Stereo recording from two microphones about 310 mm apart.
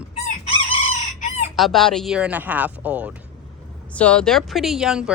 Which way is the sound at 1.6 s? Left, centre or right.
Centre.